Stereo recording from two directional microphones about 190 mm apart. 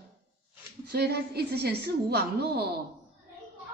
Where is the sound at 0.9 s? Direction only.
60° right (ahead or behind).